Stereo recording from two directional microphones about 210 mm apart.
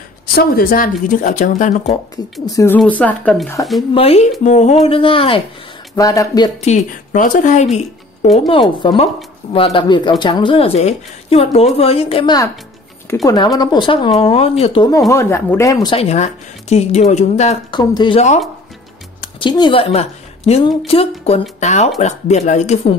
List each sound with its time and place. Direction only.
0.4 s speech: 45° left (ahead or behind)
2.4 s speech: 15° left (ahead or behind)
3.9 s speech: 30° left (ahead or behind)
7.1 s speech: 40° left (ahead or behind)
17.7 s speech: 20° left (ahead or behind)
19.4 s speech: 20° left (ahead or behind)